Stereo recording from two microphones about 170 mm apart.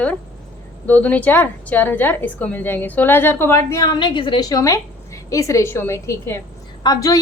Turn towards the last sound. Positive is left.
turn(degrees=20)  # may be behind; listen again after turning